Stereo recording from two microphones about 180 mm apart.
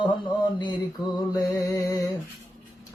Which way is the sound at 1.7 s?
20° left (ahead or behind).